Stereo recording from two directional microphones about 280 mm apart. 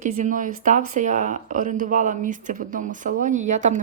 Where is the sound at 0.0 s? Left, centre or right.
Right.